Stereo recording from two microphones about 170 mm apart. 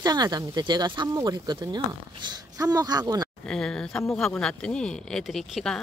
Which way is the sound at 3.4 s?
5° left (ahead or behind).